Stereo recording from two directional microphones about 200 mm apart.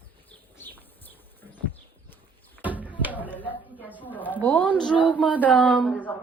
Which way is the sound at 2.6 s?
10° right (ahead or behind).